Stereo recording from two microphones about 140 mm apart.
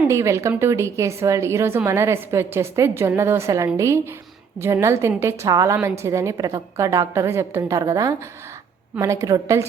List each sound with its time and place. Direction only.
0.1 s a woman's voice: 20° right (ahead or behind)